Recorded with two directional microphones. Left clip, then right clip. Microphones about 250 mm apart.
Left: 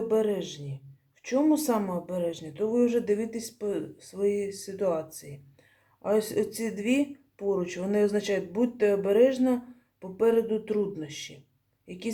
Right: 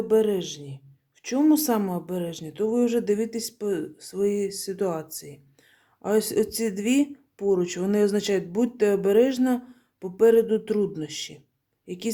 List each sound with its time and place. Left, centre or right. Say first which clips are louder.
0.1 s speech: right 6 dB; right